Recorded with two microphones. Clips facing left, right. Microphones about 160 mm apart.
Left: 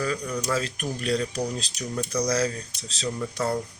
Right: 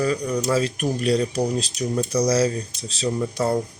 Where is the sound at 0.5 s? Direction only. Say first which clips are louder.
Right 6 dB; 10° right (ahead or behind).